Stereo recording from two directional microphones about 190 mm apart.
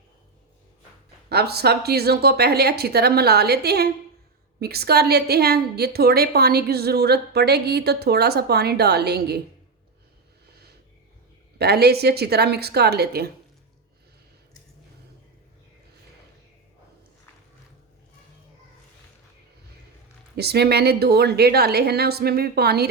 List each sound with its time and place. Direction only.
1.3 s a woman's voice: 60° right (ahead or behind)
11.5 s a woman's voice: 55° right (ahead or behind)
20.3 s a woman's voice: 60° right (ahead or behind)